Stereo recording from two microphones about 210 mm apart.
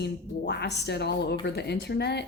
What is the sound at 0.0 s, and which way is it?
Speech, 55° left (ahead or behind).